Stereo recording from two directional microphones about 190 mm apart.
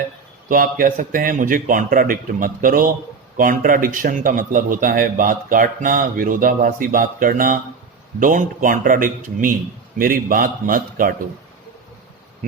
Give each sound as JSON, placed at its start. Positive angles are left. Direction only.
{"t": 0.4, "sound": "a man's voice", "side_deg": -45}